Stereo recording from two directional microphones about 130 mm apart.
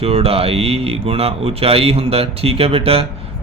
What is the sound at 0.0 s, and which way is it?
Speech, 50° right (ahead or behind).